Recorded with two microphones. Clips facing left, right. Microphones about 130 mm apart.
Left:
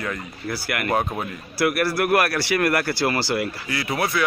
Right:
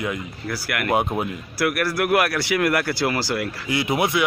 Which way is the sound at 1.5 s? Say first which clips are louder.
Left 1 dB; centre (ahead or behind).